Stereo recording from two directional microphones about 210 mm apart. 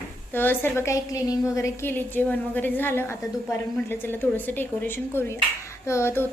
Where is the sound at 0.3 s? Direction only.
10° left (ahead or behind).